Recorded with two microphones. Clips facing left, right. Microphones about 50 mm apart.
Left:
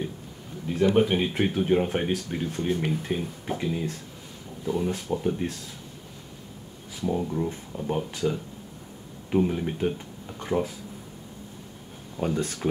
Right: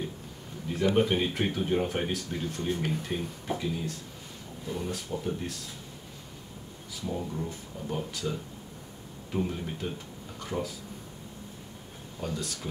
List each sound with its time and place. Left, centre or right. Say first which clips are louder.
0.8 s speech: left 3 dB; centre
2.9 s speech: left 4 dB; centre
3.4 s speech: left 4 dB; left
4.6 s speech: left 7 dB; centre
7.0 s speech: left 7 dB; left
12.2 s speech: left 7 dB; left